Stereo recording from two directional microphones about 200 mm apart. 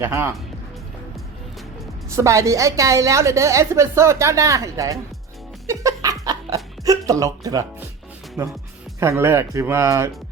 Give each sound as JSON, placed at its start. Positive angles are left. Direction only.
{"t": 0.0, "sound": "a woman's voice", "side_deg": -10}
{"t": 2.0, "sound": "a woman's voice", "side_deg": -15}
{"t": 5.6, "sound": "chuckle", "side_deg": -15}
{"t": 8.4, "sound": "a woman's voice", "side_deg": -15}